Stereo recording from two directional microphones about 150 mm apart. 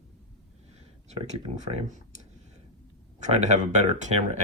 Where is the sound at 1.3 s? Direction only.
50° right (ahead or behind).